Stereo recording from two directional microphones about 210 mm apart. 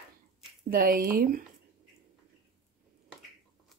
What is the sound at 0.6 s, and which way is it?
Speech, 45° right (ahead or behind).